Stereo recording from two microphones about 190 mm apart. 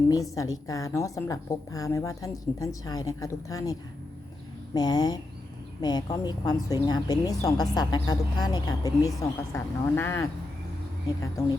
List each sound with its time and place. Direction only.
0.1 s a woman's voice: 15° left (ahead or behind)